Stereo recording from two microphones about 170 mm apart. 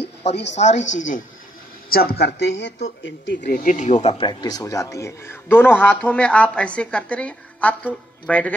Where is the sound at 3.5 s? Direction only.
45° left (ahead or behind).